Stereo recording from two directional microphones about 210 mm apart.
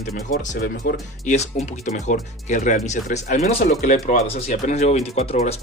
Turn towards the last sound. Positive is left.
turn(degrees=30)  # may be behind; listen again after turning